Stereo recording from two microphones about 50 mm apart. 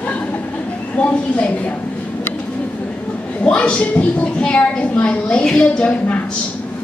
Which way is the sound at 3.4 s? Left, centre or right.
Centre.